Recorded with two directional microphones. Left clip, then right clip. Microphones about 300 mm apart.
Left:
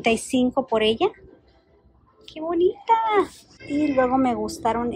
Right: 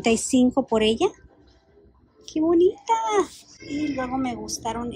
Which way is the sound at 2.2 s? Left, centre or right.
Centre.